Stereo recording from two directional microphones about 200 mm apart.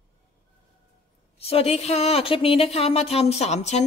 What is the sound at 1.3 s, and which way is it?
Speech, 30° left (ahead or behind).